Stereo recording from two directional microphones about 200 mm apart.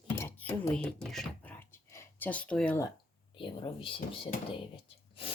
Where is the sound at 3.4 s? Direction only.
25° left (ahead or behind).